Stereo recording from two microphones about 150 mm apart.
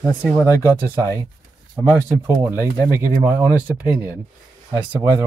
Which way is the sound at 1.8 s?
15° right (ahead or behind).